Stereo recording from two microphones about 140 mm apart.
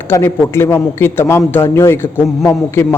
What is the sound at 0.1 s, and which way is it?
A man's voice, 20° left (ahead or behind).